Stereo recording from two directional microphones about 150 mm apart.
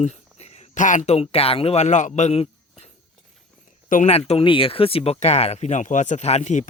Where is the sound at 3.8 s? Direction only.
60° left (ahead or behind).